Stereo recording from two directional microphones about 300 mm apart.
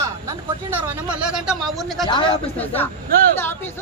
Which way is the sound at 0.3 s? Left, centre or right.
Centre.